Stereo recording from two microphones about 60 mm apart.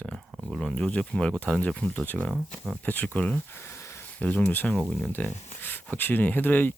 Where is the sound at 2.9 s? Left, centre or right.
Left.